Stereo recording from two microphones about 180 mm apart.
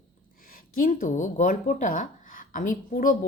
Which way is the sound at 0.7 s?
50° left (ahead or behind).